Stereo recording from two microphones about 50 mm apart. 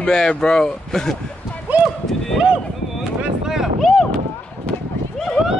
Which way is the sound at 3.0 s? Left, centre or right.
Centre.